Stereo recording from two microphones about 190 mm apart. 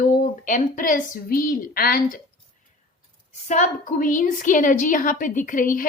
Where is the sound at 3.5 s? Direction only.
40° left (ahead or behind).